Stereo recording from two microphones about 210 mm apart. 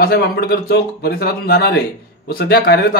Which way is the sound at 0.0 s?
45° left (ahead or behind).